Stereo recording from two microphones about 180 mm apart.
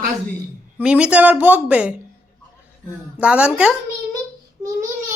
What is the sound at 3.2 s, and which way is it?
Speech, 5° right (ahead or behind).